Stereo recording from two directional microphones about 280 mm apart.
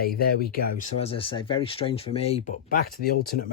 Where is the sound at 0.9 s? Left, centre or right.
Left.